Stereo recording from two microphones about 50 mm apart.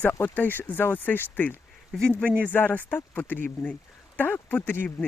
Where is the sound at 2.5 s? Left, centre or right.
Left.